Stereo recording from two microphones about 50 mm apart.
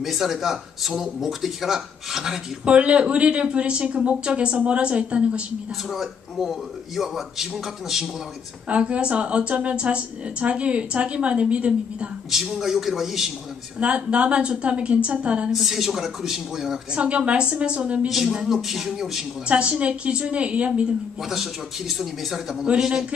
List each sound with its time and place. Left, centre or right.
0.0 s speech: centre
2.6 s a woman's voice: right
5.9 s speech: centre
8.6 s a woman's voice: right
12.3 s a man's voice: centre
13.7 s a woman's voice: right
15.5 s speech: centre
16.9 s a woman's voice: right
18.0 s a man's voice: centre
19.4 s a woman's voice: right
21.3 s a man's voice: centre